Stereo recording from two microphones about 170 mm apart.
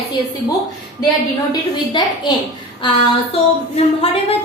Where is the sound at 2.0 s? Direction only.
25° left (ahead or behind).